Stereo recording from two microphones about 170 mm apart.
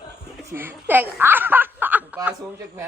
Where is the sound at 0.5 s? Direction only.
10° right (ahead or behind).